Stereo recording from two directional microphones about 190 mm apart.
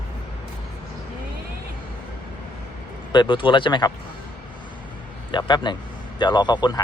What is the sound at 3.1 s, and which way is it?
Speech, 25° left (ahead or behind).